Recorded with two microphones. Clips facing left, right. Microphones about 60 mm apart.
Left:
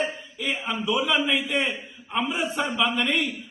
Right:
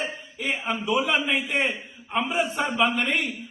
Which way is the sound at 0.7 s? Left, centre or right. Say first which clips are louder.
Even; right.